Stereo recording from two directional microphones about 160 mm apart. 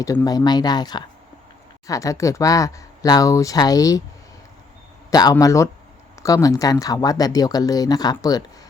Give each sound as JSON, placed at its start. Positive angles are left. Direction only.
{"t": 0.0, "sound": "speech", "side_deg": 25}
{"t": 5.1, "sound": "speech", "side_deg": 20}